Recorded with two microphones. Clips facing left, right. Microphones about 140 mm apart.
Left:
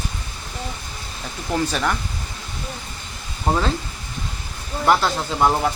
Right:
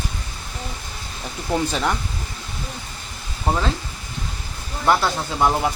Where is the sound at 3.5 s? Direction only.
10° right (ahead or behind).